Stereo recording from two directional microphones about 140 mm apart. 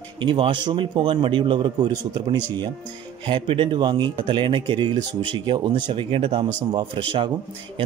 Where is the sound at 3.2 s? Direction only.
40° right (ahead or behind).